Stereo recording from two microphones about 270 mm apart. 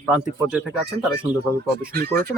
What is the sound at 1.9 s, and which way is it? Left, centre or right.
Speech, right.